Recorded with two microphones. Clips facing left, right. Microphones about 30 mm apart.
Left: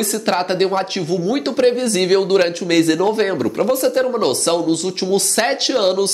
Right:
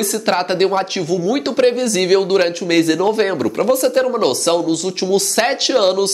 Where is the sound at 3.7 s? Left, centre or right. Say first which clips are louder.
Right 3 dB; right.